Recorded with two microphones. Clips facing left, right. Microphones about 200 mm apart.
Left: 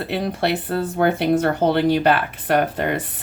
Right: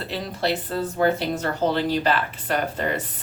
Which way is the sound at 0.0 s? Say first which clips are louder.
Left 5 dB; 60° left (ahead or behind).